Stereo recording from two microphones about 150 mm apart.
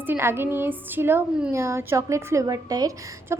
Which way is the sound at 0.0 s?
15° right (ahead or behind).